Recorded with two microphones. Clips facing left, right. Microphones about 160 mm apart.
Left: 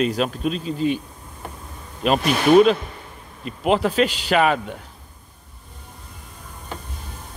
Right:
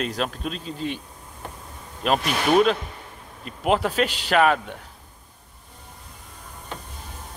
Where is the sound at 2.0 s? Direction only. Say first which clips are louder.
Left 4 dB; centre (ahead or behind).